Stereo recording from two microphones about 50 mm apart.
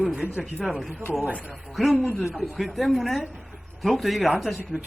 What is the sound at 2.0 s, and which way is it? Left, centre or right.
A man's voice, centre.